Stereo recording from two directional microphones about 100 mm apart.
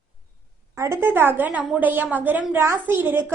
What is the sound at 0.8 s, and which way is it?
A woman's voice, 25° right (ahead or behind).